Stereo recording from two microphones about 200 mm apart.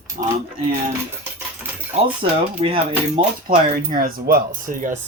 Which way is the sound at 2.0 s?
30° right (ahead or behind).